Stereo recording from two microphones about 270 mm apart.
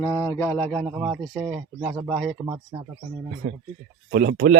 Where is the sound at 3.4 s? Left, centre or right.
Right.